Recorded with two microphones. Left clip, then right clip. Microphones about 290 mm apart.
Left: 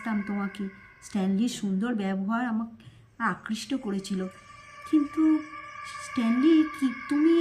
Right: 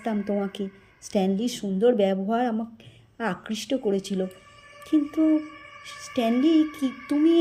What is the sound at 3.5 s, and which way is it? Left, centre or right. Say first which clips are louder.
Speech: right 7 dB; centre.